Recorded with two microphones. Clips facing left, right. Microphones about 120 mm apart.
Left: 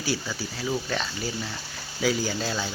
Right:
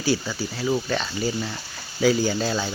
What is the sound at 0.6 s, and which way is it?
Speech, 5° right (ahead or behind).